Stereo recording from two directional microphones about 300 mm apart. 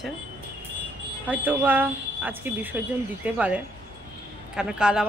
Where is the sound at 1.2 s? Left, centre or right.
Centre.